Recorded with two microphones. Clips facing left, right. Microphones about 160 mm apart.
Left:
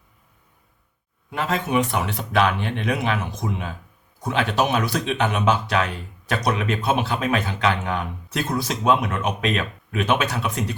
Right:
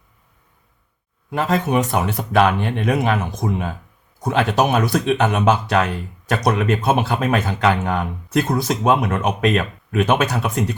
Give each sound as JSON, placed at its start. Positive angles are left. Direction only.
{"t": 1.3, "sound": "speech", "side_deg": -40}